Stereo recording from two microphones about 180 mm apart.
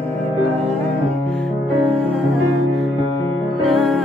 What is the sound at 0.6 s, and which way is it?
Music, 35° right (ahead or behind).